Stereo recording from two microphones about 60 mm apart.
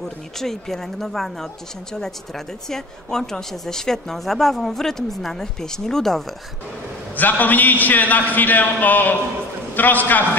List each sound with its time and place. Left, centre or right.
0.4 s speech: centre
7.2 s a man's voice: left